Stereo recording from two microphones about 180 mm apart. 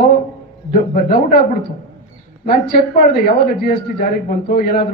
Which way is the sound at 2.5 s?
60° left (ahead or behind).